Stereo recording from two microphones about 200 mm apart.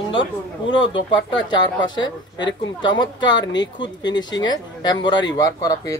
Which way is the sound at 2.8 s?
20° left (ahead or behind).